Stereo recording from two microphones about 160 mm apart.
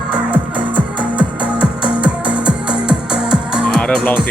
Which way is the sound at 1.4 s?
30° left (ahead or behind).